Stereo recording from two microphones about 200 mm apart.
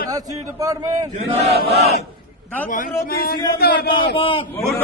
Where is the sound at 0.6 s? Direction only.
15° right (ahead or behind).